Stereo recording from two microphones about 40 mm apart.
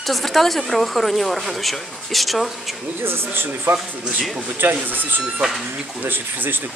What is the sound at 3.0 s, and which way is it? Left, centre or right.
Speech, right.